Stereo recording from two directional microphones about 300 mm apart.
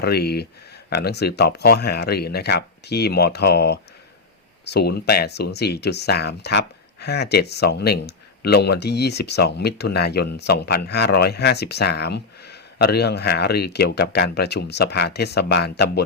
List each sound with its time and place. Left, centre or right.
0.0 s speech: left